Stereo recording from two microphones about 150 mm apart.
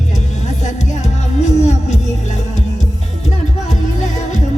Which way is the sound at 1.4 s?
50° left (ahead or behind).